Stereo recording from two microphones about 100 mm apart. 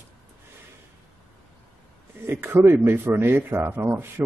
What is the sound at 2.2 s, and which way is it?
Speech, 25° right (ahead or behind).